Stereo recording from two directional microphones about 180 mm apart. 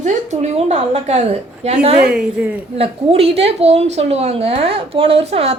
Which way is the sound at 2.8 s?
30° right (ahead or behind).